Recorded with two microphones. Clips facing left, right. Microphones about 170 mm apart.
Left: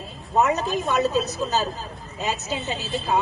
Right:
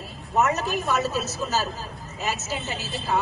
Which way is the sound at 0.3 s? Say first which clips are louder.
Left 2 dB; 15° left (ahead or behind).